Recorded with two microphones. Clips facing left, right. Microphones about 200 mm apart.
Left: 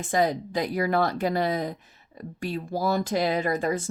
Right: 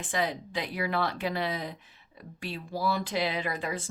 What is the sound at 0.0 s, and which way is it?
Speech, 40° left (ahead or behind).